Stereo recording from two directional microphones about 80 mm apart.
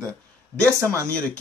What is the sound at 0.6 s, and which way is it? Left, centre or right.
Speech, right.